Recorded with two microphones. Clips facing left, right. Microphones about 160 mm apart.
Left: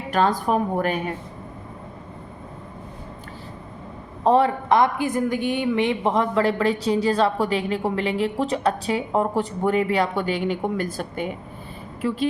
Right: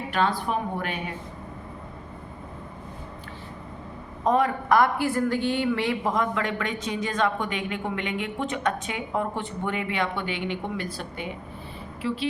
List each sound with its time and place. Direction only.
0.1 s a woman's voice: 40° left (ahead or behind)
4.2 s a woman's voice: 30° left (ahead or behind); by 12.3 s 45° left (ahead or behind)